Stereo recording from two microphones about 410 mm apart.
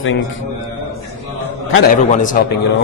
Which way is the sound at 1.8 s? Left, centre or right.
Centre.